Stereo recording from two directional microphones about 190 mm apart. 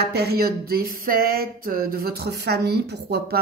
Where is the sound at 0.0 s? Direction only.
55° right (ahead or behind).